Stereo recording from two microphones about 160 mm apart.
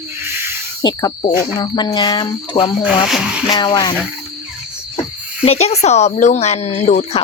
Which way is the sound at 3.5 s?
25° left (ahead or behind).